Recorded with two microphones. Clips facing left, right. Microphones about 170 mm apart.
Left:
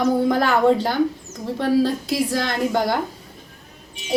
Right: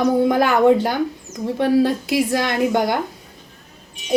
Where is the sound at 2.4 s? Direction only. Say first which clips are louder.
Right 2 dB; 20° right (ahead or behind).